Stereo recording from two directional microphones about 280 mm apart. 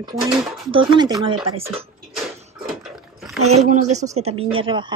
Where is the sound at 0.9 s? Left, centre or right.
Centre.